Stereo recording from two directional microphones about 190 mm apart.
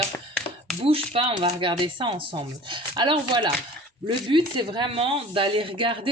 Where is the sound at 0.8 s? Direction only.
30° right (ahead or behind).